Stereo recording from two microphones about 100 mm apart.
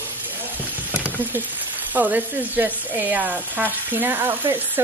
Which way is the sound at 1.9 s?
15° right (ahead or behind).